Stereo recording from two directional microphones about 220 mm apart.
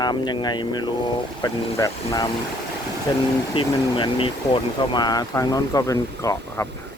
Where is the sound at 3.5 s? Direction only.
25° left (ahead or behind).